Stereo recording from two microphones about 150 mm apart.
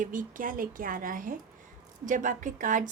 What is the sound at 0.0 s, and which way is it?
A woman's voice, 60° right (ahead or behind).